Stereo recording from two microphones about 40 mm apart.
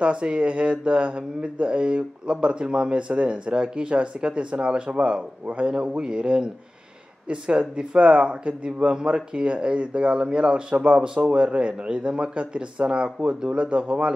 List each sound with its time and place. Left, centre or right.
0.0 s speech: right